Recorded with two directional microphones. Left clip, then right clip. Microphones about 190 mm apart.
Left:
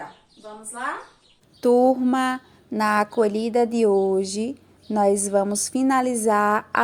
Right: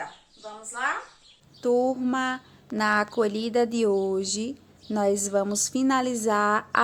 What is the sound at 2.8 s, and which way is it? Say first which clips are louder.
A woman's voice: left 3 dB; 15° left (ahead or behind).